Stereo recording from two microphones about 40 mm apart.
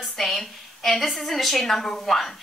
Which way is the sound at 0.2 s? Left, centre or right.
Centre.